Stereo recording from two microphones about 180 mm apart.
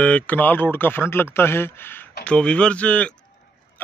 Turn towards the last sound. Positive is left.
turn(degrees=5)  # may be behind; listen again after turning